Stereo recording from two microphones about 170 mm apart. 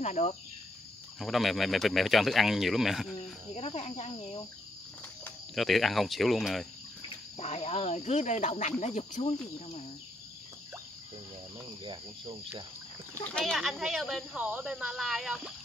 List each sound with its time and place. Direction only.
0.0 s speech: 40° left (ahead or behind)
1.2 s speech: centre (ahead or behind)
3.2 s cricket: 35° left (ahead or behind)
5.5 s speech: centre (ahead or behind)
7.3 s speech: 40° left (ahead or behind)
11.8 s cricket: 25° right (ahead or behind)
13.3 s speech: 5° left (ahead or behind)